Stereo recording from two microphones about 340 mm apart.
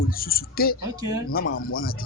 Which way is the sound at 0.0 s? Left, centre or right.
Left.